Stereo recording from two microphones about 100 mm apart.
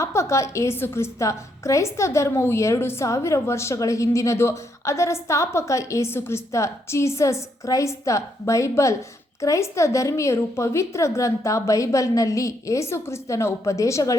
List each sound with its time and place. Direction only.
0.0 s a woman's voice: 30° left (ahead or behind)